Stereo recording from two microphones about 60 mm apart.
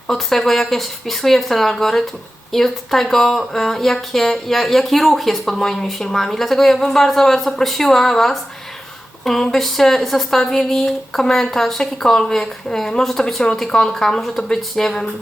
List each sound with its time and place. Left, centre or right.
0.1 s speech: centre